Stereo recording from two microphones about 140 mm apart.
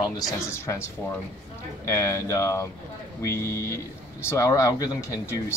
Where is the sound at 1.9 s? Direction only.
20° left (ahead or behind).